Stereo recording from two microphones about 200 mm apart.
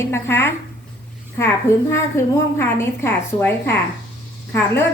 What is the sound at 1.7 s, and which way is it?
A woman's voice, 15° left (ahead or behind).